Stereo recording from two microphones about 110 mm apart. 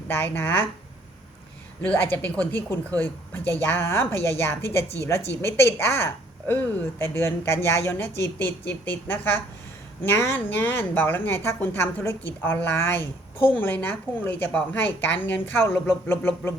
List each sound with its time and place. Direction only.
0.1 s a woman's voice: 20° left (ahead or behind)
1.8 s a woman's voice: 15° left (ahead or behind)